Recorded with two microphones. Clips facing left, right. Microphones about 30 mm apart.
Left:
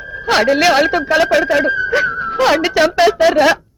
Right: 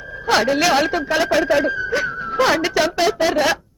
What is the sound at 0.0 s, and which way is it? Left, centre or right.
Speech, left.